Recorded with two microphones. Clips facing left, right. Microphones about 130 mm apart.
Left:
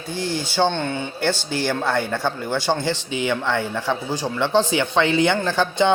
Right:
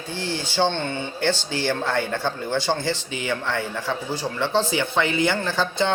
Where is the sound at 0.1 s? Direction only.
15° left (ahead or behind).